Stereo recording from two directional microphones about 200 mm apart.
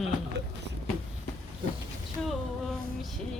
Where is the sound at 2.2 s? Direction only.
Centre (ahead or behind).